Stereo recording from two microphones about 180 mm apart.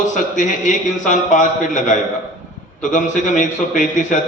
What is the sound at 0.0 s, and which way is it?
A man's voice, 45° left (ahead or behind).